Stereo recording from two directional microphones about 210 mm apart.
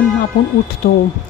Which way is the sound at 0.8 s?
45° left (ahead or behind).